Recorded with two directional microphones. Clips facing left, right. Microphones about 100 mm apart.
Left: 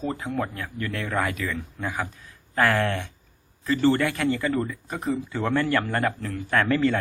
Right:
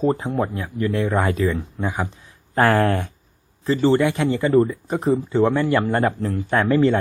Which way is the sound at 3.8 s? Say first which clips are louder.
Right 4 dB; 20° right (ahead or behind).